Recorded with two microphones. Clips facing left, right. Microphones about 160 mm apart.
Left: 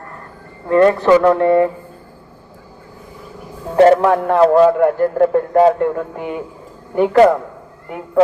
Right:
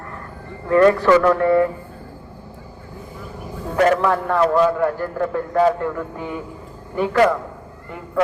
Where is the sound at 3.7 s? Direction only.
30° left (ahead or behind).